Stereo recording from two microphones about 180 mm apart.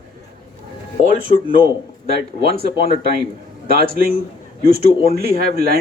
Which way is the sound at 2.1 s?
55° right (ahead or behind).